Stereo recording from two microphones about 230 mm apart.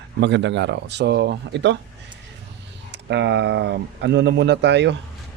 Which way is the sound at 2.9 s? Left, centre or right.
Right.